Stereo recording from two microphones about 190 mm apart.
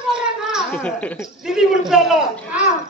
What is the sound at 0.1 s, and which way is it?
Children playing, 5° right (ahead or behind).